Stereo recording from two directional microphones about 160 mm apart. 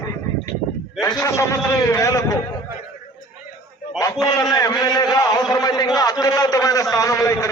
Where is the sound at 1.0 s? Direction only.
20° left (ahead or behind).